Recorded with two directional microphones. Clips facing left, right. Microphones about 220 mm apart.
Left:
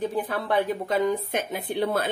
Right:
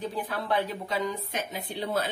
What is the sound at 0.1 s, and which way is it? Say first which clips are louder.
Speech: left 4 dB; 50° left (ahead or behind).